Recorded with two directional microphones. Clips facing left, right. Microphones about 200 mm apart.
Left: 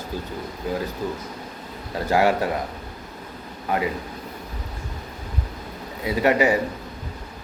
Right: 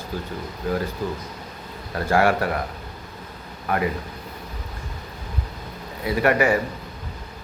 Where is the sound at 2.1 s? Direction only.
15° left (ahead or behind).